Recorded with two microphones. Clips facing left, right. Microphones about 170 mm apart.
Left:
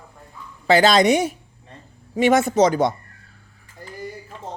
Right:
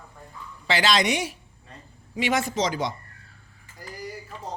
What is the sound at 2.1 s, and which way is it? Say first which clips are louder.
Speech: left 9 dB; 50° left (ahead or behind).